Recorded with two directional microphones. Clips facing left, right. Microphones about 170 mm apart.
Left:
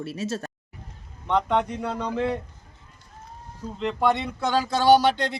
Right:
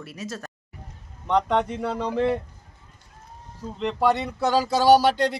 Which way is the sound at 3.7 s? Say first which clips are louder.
Right 1 dB; centre (ahead or behind).